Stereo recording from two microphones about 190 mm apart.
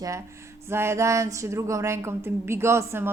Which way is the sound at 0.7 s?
15° right (ahead or behind).